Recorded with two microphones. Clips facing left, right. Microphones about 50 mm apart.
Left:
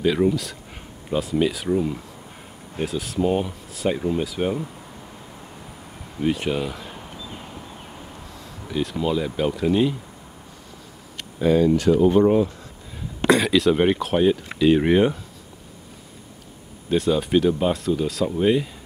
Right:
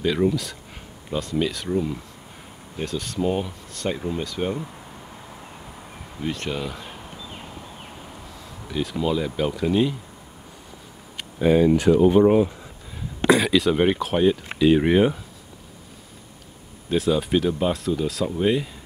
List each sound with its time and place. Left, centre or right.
0.0 s speech: centre
6.1 s speech: centre
8.6 s speech: centre
11.1 s speech: centre
13.3 s speech: centre
16.9 s speech: centre